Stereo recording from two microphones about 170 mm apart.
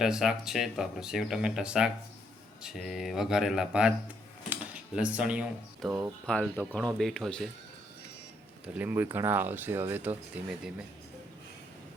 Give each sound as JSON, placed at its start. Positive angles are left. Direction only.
{"t": 0.0, "sound": "speech", "side_deg": -5}
{"t": 6.2, "sound": "speech", "side_deg": 5}
{"t": 8.6, "sound": "speech", "side_deg": -10}